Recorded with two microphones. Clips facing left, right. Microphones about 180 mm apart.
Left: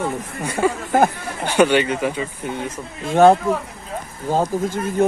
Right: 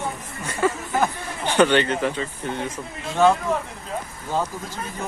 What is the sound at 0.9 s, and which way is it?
Chatter, 55° left (ahead or behind).